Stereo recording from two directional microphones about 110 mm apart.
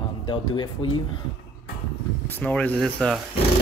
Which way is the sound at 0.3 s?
45° left (ahead or behind).